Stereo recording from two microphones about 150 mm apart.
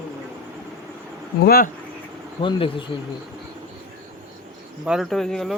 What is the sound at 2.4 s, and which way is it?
Speech, 35° left (ahead or behind).